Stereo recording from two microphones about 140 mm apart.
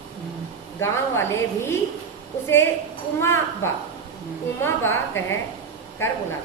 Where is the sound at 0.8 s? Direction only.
20° left (ahead or behind).